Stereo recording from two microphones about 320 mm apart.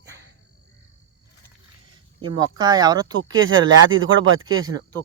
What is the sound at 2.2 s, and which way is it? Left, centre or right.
Speech, centre.